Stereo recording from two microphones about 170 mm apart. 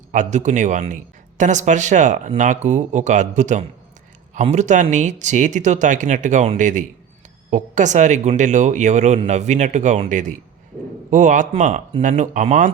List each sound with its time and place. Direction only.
0.1 s speech: 45° right (ahead or behind)